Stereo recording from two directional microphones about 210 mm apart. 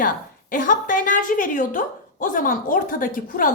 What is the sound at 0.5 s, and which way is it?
A woman's voice, 40° left (ahead or behind).